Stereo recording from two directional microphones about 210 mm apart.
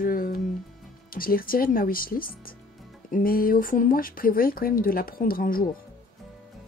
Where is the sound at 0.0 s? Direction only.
40° left (ahead or behind).